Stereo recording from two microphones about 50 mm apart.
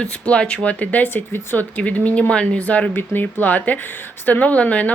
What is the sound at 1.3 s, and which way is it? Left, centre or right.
Speech, left.